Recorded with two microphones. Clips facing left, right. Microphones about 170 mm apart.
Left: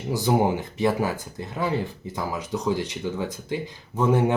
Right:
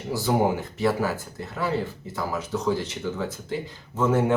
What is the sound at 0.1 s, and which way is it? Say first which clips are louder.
Speech: left 1 dB; 20° left (ahead or behind).